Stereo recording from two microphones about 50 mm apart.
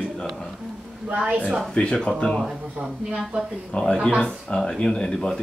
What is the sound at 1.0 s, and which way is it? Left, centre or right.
Speech, right.